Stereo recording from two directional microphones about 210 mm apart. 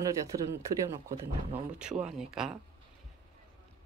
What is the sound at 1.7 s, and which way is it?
Speech, 5° right (ahead or behind).